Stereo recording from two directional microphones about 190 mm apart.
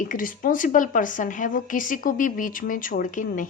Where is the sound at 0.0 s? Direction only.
45° left (ahead or behind).